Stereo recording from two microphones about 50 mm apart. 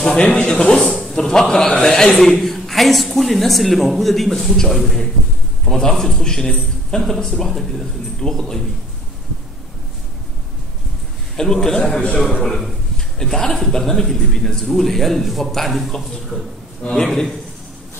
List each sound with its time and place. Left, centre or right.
0.0 s a man's voice: centre
11.3 s a man's voice: centre
16.8 s a man's voice: centre